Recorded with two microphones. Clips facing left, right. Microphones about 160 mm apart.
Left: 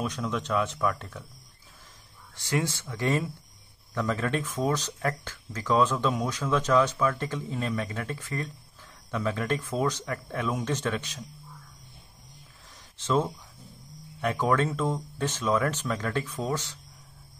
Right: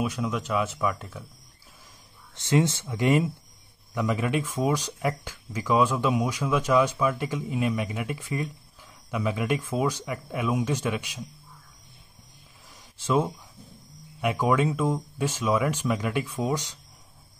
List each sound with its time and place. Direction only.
0.0 s speech: 10° right (ahead or behind)
2.3 s speech: 20° right (ahead or behind)
12.9 s speech: 10° right (ahead or behind)